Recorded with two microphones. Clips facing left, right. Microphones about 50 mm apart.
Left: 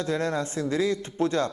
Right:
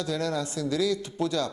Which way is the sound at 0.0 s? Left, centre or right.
Left.